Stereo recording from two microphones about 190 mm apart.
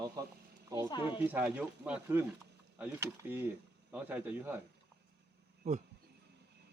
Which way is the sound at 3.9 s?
10° right (ahead or behind).